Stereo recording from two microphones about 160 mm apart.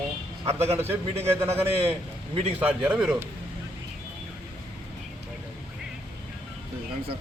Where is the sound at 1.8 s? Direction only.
40° right (ahead or behind).